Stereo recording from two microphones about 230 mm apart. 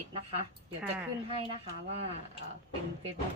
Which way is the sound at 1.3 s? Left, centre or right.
Right.